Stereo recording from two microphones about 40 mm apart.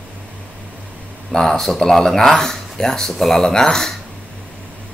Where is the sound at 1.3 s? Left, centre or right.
Centre.